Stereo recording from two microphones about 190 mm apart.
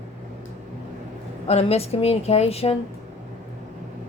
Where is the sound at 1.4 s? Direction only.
35° left (ahead or behind).